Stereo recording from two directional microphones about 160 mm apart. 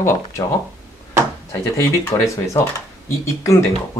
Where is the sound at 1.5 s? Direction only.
20° left (ahead or behind).